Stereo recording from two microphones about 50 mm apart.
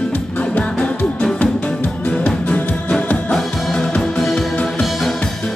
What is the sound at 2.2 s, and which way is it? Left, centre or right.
Music, left.